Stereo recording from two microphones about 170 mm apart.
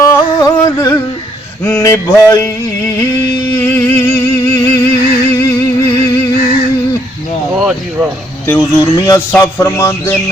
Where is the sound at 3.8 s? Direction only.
10° left (ahead or behind).